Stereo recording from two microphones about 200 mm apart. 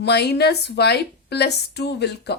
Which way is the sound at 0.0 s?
55° left (ahead or behind).